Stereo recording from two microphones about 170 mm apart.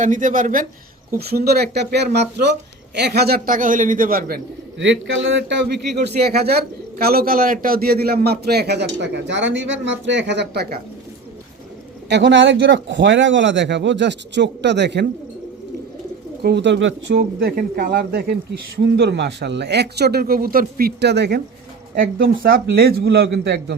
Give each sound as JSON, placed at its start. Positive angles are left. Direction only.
{"t": 0.0, "sound": "speech", "side_deg": -50}
{"t": 1.1, "sound": "speech", "side_deg": -65}
{"t": 4.8, "sound": "speech", "side_deg": -90}
{"t": 12.0, "sound": "speech", "side_deg": -90}
{"t": 16.4, "sound": "speech", "side_deg": -80}
{"t": 18.9, "sound": "speech", "side_deg": -80}
{"t": 21.9, "sound": "speech", "side_deg": -55}